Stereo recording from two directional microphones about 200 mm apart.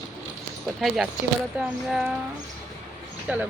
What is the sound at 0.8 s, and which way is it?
Speech, centre (ahead or behind).